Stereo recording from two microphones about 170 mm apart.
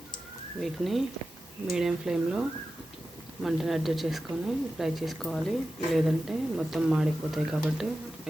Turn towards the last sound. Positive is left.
turn(degrees=-5)  # may be behind; listen again after turning